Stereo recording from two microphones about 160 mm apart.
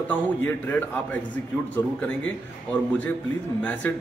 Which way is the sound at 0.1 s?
15° left (ahead or behind).